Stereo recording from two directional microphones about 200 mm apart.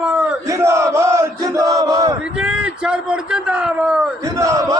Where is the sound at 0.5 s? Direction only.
15° right (ahead or behind).